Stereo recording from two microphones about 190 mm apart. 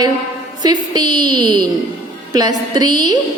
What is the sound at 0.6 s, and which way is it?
A woman's voice, 20° right (ahead or behind).